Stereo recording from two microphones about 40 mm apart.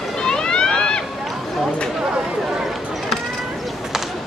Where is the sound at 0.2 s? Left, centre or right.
Centre.